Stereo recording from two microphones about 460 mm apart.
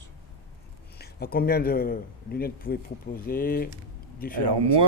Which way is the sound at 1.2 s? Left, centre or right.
Centre.